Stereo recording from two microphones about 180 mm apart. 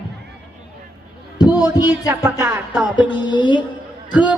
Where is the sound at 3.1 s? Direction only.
25° left (ahead or behind).